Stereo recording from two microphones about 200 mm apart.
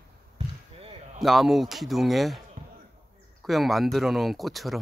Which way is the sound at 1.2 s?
Centre (ahead or behind).